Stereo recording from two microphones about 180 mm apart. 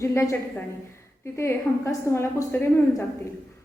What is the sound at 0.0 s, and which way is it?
Speech, 15° left (ahead or behind).